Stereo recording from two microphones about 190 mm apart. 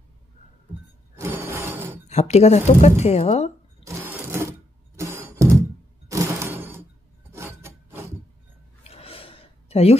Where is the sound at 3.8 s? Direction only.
15° right (ahead or behind).